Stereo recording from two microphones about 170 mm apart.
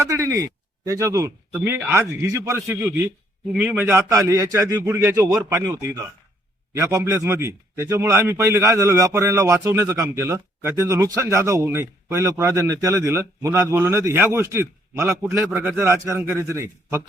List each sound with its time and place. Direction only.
0.1 s a man's voice: 20° right (ahead or behind)